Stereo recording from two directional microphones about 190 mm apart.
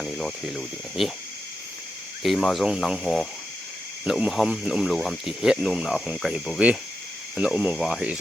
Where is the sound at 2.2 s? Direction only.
Centre (ahead or behind).